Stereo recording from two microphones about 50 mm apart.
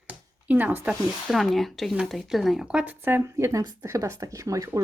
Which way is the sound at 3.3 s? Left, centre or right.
Right.